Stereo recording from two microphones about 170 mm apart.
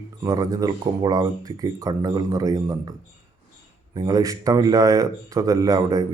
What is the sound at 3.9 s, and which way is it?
Speech, 20° right (ahead or behind).